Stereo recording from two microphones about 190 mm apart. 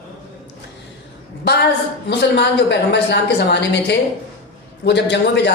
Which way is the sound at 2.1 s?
60° left (ahead or behind).